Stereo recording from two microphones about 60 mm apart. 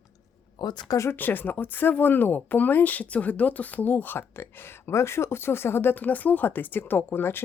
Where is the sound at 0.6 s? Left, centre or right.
Left.